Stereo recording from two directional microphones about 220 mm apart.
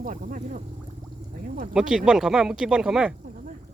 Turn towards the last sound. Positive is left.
turn(degrees=-35)  # may be behind; listen again after turning